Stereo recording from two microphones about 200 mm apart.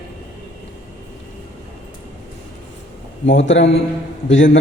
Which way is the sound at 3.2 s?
65° left (ahead or behind).